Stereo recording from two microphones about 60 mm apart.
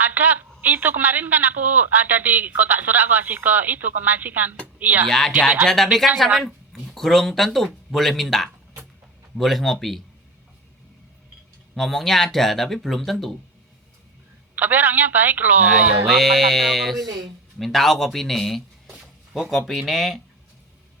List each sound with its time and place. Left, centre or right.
0.0 s a man's voice: right
5.0 s speech: centre
11.7 s speech: centre
14.5 s a man's voice: right
16.0 s speech: centre